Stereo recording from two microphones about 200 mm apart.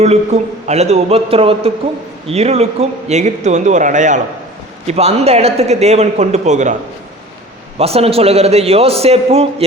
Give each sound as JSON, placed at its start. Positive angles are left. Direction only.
{"t": 0.0, "sound": "a man's voice", "side_deg": -35}
{"t": 7.8, "sound": "a man's voice", "side_deg": -30}